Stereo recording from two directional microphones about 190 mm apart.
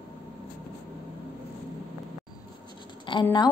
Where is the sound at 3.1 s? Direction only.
25° left (ahead or behind).